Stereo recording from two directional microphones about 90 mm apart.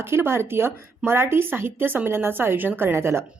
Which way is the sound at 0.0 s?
30° right (ahead or behind).